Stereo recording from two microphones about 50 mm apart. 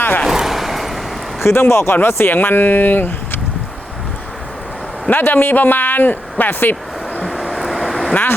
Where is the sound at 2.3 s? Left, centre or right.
Left.